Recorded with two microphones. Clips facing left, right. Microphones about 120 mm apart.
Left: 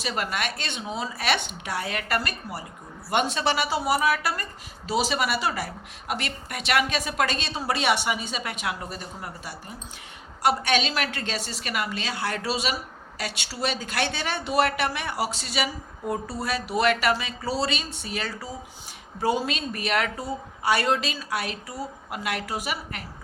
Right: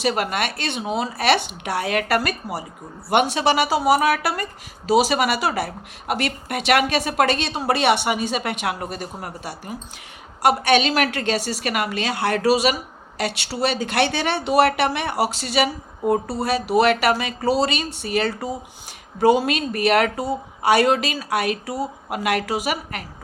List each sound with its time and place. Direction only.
0.0 s a woman's voice: 60° right (ahead or behind); by 2.6 s 85° right
3.1 s speech: 65° right (ahead or behind); by 3.8 s 80° right
3.8 s speech: 70° right (ahead or behind)
4.9 s a woman's voice: 80° right; by 18.5 s 60° right (ahead or behind)
19.2 s speech: 70° right (ahead or behind)